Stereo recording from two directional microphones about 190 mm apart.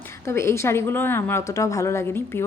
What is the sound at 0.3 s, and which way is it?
A woman's voice, 15° left (ahead or behind).